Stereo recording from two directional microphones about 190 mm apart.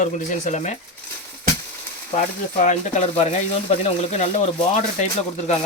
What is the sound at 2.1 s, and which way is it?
Speech, 40° left (ahead or behind).